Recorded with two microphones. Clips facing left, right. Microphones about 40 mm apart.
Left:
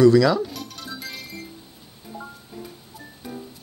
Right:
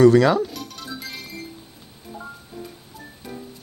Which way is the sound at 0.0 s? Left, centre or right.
Right.